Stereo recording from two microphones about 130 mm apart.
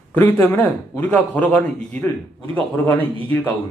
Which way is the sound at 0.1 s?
15° left (ahead or behind).